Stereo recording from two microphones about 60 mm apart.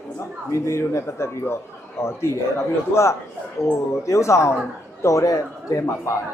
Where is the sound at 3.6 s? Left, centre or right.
Left.